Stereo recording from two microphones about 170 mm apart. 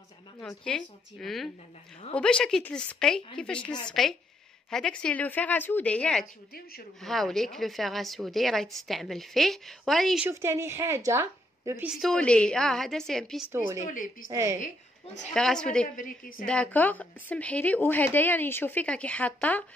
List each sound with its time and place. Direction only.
0.4 s a woman's voice: 5° left (ahead or behind)
6.5 s a woman's voice: 65° left (ahead or behind)
7.0 s a woman's voice: centre (ahead or behind)
10.2 s a woman's voice: 15° right (ahead or behind)
11.9 s a woman's voice: centre (ahead or behind)
13.5 s a woman's voice: 15° right (ahead or behind)
13.8 s a woman's voice: 50° left (ahead or behind)
14.3 s a woman's voice: 15° right (ahead or behind)
15.3 s a woman's voice: 5° left (ahead or behind)
16.0 s a woman's voice: 55° left (ahead or behind)
16.4 s speech: 10° left (ahead or behind)